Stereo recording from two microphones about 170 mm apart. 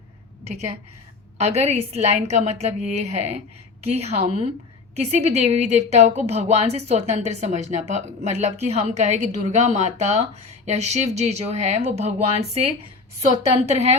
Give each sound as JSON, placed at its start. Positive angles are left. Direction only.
{"t": 1.4, "sound": "a woman's voice", "side_deg": -40}